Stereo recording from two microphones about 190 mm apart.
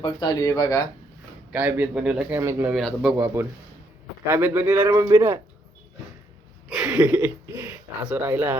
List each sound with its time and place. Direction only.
0.0 s speech: 25° left (ahead or behind)
1.5 s a man's voice: 10° right (ahead or behind)
2.7 s a man's voice: centre (ahead or behind)
4.3 s a man's voice: 10° right (ahead or behind)
6.7 s speech: 5° right (ahead or behind)